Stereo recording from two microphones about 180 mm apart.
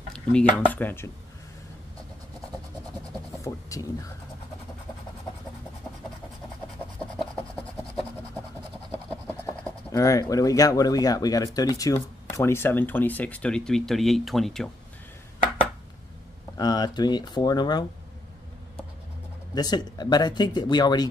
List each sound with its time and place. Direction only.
0.1 s a sound: 5° left (ahead or behind)
0.7 s speech: 10° left (ahead or behind)
3.3 s speech: 20° left (ahead or behind)
7.2 s filing: 5° right (ahead or behind)
9.3 s speech: 15° left (ahead or behind)
16.5 s speech: 20° left (ahead or behind)
19.5 s speech: 20° left (ahead or behind)